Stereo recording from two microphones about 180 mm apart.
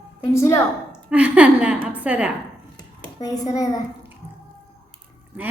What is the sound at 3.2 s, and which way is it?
Speech, 20° left (ahead or behind).